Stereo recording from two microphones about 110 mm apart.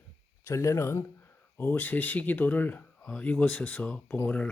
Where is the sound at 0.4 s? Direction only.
25° left (ahead or behind).